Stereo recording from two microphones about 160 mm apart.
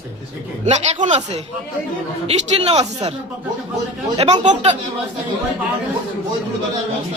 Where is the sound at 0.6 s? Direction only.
45° right (ahead or behind).